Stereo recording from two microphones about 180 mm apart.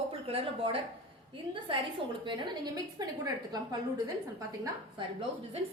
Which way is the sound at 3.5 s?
20° right (ahead or behind).